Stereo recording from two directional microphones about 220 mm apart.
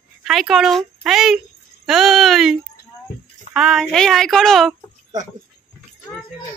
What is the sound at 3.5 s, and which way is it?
Speech, centre (ahead or behind).